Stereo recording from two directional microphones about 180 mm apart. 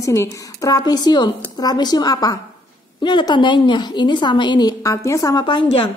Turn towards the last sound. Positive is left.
turn(degrees=25)  # may be behind; listen again after turning